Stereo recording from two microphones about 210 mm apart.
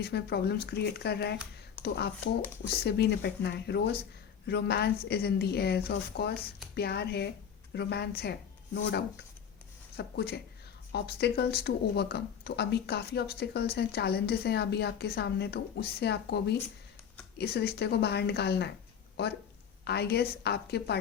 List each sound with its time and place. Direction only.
0.0 s a woman's voice: 50° left (ahead or behind)